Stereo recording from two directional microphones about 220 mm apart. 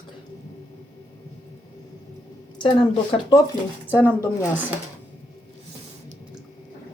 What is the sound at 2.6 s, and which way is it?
Speech, 25° left (ahead or behind).